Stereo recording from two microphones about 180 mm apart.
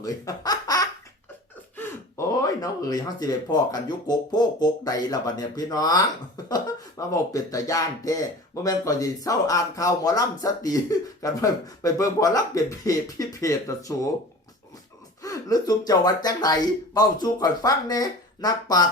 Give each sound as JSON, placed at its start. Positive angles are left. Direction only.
{"t": 0.0, "sound": "speech", "side_deg": 20}
{"t": 15.2, "sound": "speech", "side_deg": 20}